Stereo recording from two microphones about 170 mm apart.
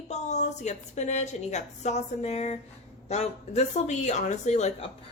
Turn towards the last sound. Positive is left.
turn(degrees=40)  # may be behind; listen again after turning